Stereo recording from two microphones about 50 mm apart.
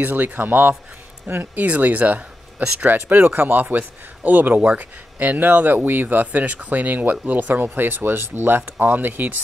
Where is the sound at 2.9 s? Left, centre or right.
Right.